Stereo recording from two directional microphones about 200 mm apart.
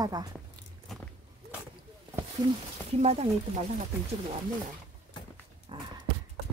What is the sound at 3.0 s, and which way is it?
Speech, 30° right (ahead or behind).